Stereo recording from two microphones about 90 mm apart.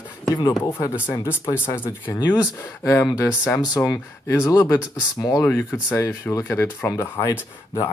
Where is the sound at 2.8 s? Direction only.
25° left (ahead or behind).